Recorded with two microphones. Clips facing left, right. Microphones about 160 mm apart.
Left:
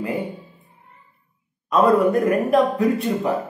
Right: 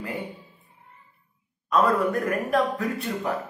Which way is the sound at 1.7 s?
25° left (ahead or behind).